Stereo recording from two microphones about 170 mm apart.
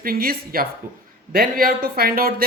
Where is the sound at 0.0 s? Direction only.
60° right (ahead or behind).